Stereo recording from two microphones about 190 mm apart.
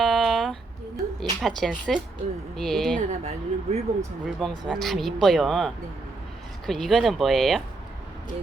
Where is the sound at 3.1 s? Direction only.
35° right (ahead or behind).